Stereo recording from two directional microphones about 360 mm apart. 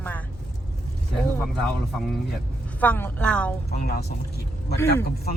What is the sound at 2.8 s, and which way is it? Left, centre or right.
Speech, centre.